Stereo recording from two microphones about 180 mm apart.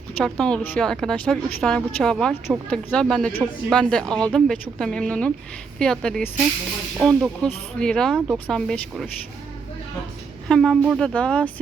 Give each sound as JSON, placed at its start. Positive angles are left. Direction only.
{"t": 0.3, "sound": "a woman's voice", "side_deg": 5}
{"t": 10.5, "sound": "a woman's voice", "side_deg": 0}